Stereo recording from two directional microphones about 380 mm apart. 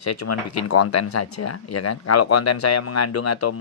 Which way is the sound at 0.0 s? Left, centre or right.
Left.